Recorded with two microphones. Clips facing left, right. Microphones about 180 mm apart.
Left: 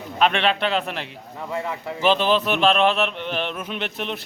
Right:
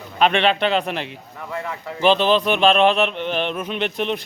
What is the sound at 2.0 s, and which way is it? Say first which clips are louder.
Speech: right 3 dB; 5° left (ahead or behind).